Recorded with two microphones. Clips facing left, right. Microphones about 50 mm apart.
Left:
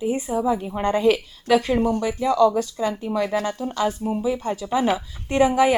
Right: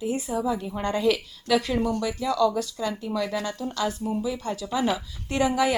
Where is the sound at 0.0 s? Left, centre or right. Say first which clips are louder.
Left 4 dB; left.